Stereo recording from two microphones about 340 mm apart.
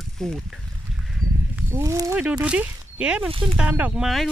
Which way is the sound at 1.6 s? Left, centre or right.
Centre.